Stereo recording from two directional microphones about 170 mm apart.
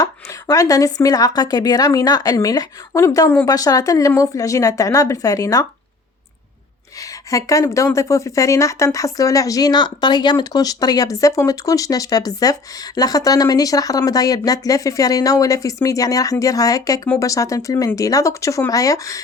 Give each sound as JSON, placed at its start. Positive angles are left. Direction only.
{"t": 0.0, "sound": "speech", "side_deg": 20}
{"t": 7.3, "sound": "speech", "side_deg": 20}